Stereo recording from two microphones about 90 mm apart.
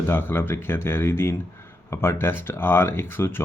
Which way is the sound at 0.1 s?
25° left (ahead or behind).